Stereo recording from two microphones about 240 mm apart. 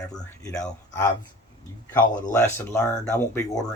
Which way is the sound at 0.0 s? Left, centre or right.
Centre.